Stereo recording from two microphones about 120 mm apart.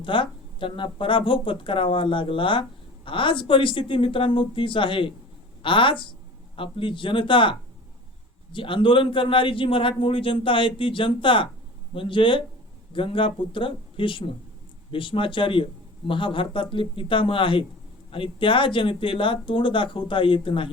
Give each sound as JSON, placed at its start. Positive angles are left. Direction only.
{"t": 0.0, "sound": "speech", "side_deg": 45}
{"t": 8.5, "sound": "speech", "side_deg": 45}